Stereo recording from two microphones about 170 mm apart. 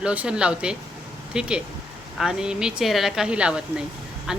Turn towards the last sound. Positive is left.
turn(degrees=-5)  # may be behind; listen again after turning